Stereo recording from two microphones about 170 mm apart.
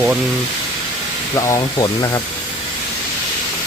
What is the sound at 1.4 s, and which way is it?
Speech, 20° left (ahead or behind).